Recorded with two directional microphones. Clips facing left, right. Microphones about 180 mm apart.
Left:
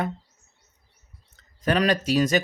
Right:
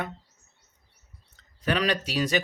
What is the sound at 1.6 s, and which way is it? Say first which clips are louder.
Speech: left 4 dB; 45° left (ahead or behind).